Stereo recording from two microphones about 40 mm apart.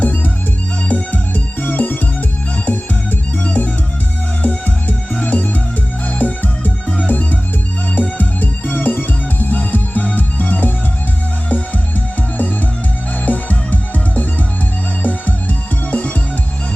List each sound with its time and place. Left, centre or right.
0.9 s music: left